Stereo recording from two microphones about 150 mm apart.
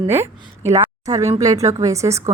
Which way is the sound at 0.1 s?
15° right (ahead or behind).